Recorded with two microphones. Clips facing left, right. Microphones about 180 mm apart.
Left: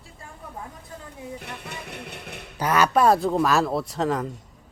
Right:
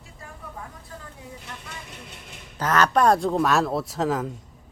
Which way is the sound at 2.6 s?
10° left (ahead or behind).